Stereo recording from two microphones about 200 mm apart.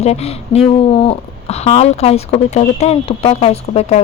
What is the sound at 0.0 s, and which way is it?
A woman's voice, 30° left (ahead or behind).